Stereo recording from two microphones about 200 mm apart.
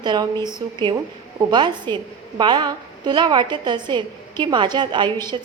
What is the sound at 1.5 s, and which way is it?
A woman's voice, 20° right (ahead or behind).